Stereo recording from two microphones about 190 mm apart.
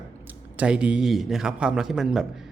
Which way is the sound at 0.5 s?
5° right (ahead or behind).